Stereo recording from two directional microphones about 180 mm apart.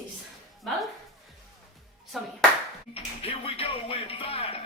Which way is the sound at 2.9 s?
30° left (ahead or behind).